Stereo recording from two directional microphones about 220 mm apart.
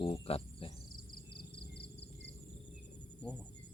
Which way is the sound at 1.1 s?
45° left (ahead or behind).